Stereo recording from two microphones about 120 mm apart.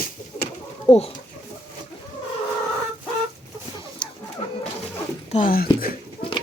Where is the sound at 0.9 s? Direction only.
55° left (ahead or behind).